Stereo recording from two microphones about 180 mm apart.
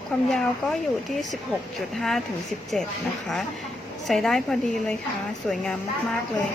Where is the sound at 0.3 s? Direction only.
Centre (ahead or behind).